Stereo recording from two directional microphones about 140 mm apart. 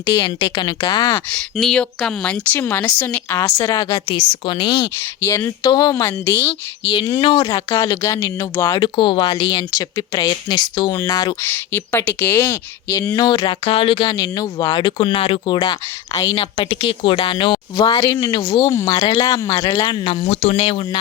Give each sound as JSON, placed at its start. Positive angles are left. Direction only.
{"t": 0.2, "sound": "speech", "side_deg": 35}
{"t": 1.1, "sound": "speech", "side_deg": 10}
{"t": 4.9, "sound": "speech", "side_deg": 15}
{"t": 5.6, "sound": "speech", "side_deg": 30}
{"t": 6.1, "sound": "speech", "side_deg": 15}
{"t": 7.2, "sound": "speech", "side_deg": 40}
{"t": 7.7, "sound": "speech", "side_deg": 20}
{"t": 8.8, "sound": "speech", "side_deg": 35}
{"t": 11.4, "sound": "speech", "side_deg": 15}
{"t": 13.1, "sound": "speech", "side_deg": 35}
{"t": 16.1, "sound": "speech", "side_deg": 25}
{"t": 16.4, "sound": "speech", "side_deg": 40}